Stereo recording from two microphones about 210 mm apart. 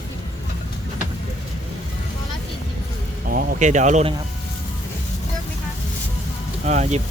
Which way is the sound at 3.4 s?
35° right (ahead or behind).